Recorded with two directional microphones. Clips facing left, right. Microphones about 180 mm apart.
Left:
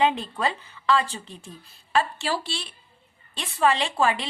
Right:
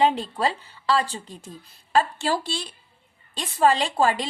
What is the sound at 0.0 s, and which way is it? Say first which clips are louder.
A woman's voice: right 2 dB; 35° right (ahead or behind).